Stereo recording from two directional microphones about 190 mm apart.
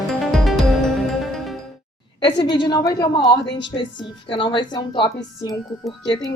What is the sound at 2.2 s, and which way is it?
A woman's voice, 25° left (ahead or behind).